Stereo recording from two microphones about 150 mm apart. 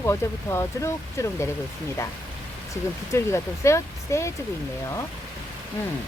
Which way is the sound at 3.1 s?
20° left (ahead or behind).